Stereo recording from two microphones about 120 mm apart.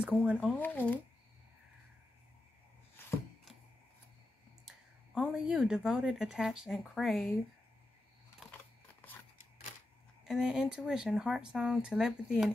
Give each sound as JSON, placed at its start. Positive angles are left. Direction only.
{"t": 0.0, "sound": "speech", "side_deg": -5}
{"t": 0.6, "sound": "speech", "side_deg": 15}
{"t": 4.6, "sound": "speech", "side_deg": -5}
{"t": 8.4, "sound": "camera", "side_deg": 0}
{"t": 10.2, "sound": "speech", "side_deg": -5}